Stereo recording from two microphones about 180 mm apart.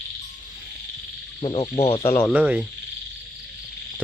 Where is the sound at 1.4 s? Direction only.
30° left (ahead or behind).